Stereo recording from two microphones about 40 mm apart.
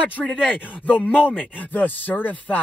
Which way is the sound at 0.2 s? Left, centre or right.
Centre.